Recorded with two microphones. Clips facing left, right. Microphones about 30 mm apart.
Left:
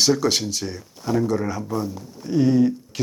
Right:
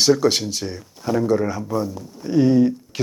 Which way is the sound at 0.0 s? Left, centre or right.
Centre.